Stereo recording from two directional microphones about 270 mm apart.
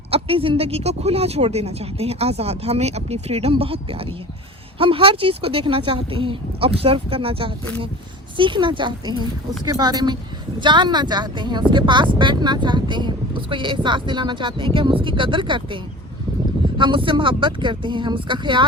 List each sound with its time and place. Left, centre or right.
0.1 s speech: centre